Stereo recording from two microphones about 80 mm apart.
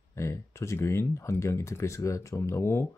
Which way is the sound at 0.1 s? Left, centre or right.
Left.